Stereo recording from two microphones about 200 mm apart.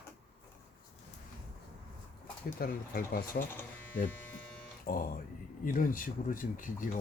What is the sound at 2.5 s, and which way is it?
Speech, 50° left (ahead or behind).